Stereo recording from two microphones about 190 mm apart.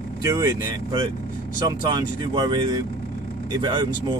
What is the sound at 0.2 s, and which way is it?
Speech, 20° right (ahead or behind).